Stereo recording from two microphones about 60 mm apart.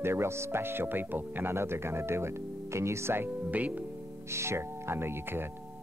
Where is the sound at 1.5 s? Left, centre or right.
Right.